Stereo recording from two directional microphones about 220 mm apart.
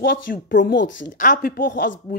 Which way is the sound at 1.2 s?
40° left (ahead or behind).